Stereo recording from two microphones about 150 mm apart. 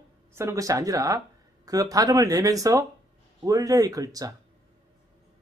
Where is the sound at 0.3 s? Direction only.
20° right (ahead or behind).